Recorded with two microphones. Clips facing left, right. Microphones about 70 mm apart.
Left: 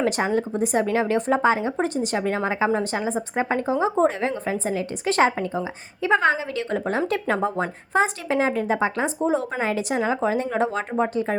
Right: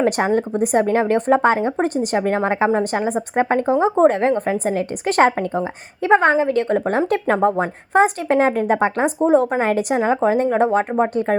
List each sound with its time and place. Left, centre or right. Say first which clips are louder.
0.0 s a woman's voice: right 4 dB; right
9.9 s speech: right 5 dB; right